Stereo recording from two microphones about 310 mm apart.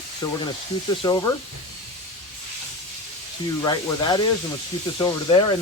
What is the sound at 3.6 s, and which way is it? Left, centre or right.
Speech, centre.